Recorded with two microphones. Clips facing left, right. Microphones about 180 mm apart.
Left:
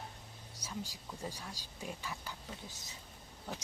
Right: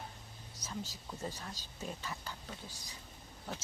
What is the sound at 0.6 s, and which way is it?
Speech, 15° left (ahead or behind).